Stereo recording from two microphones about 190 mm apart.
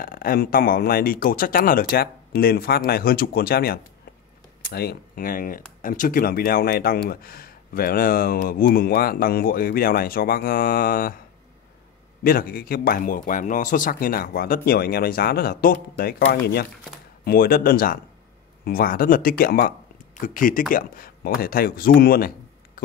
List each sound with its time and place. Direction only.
0.0 s speech: 50° left (ahead or behind)
12.2 s speech: 50° left (ahead or behind)